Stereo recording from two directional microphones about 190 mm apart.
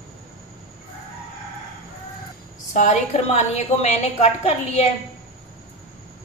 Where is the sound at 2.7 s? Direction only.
40° left (ahead or behind).